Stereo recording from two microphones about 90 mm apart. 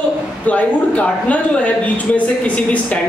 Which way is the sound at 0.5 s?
15° left (ahead or behind).